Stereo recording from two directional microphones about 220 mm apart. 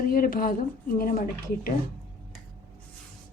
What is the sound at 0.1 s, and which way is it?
A woman's voice, 40° left (ahead or behind).